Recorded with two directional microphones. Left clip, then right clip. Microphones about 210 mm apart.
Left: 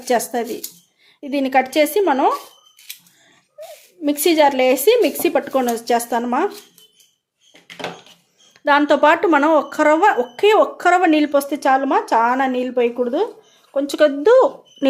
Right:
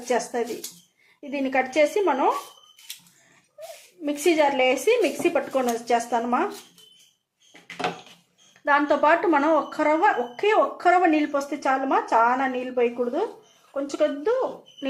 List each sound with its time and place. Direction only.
0.0 s speech: 55° left (ahead or behind)
4.0 s speech: 55° left (ahead or behind)
8.6 s speech: 50° left (ahead or behind)